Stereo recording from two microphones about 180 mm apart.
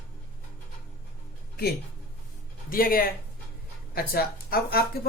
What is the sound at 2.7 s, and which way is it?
Speech, 55° left (ahead or behind).